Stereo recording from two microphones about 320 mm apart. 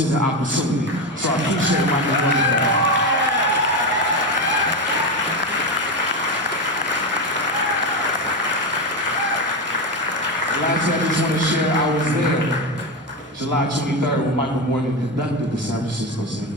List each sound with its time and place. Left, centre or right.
0.0 s speech: right
3.2 s applause: right
6.9 s applause: right
10.4 s a man's voice: right